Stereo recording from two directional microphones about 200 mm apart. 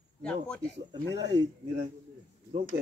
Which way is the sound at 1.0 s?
60° right (ahead or behind).